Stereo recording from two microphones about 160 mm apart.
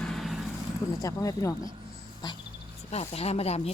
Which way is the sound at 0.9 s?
20° left (ahead or behind).